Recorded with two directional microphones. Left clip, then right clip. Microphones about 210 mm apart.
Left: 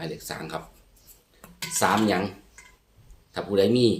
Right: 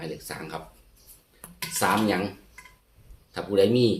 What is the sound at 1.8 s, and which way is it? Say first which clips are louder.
Speech: left 1 dB; 15° left (ahead or behind).